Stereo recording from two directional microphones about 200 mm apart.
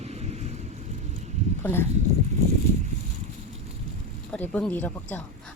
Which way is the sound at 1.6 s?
10° left (ahead or behind).